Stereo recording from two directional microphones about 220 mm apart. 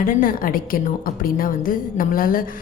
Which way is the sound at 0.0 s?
40° left (ahead or behind).